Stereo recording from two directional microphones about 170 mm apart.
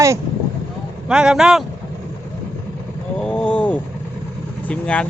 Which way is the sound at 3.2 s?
5° left (ahead or behind).